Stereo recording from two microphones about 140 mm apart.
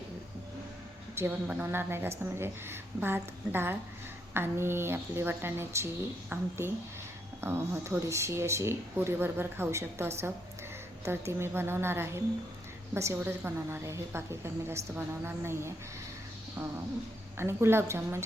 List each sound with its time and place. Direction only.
1.1 s a woman's voice: 15° right (ahead or behind)
17.3 s a woman's voice: 20° right (ahead or behind)